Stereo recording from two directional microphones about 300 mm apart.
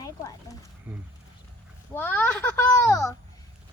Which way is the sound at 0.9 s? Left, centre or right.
Centre.